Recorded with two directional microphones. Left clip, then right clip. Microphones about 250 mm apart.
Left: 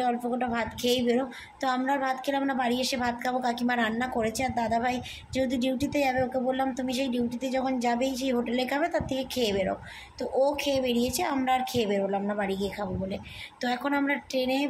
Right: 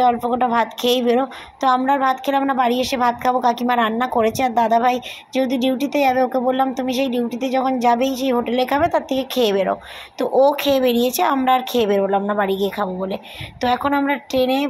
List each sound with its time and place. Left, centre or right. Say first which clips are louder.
0.0 s a woman's voice: right 11 dB; centre